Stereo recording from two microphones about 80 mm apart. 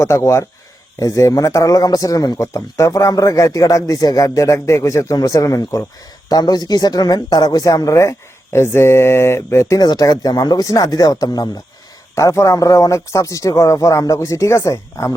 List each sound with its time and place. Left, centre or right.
0.0 s a man's voice: left
9.8 s a man's voice: left
12.1 s a man's voice: left